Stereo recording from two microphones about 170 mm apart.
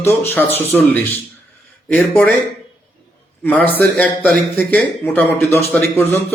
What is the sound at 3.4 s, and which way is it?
Speech, 10° left (ahead or behind).